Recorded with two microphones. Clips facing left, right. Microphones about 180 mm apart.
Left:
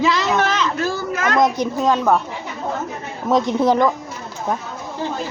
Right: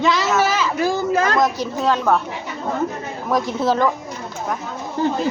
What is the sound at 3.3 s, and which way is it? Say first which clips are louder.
Speech: left 3 dB; 20° left (ahead or behind).